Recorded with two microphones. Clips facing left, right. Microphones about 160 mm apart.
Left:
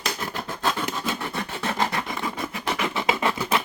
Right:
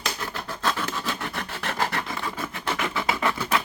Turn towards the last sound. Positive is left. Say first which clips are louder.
# left 1 dB
turn(degrees=20)  # may be behind; listen again after turning